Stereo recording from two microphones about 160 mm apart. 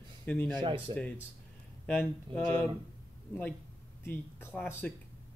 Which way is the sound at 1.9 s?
10° left (ahead or behind).